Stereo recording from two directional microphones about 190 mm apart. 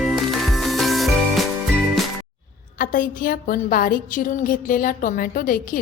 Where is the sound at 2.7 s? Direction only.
50° left (ahead or behind).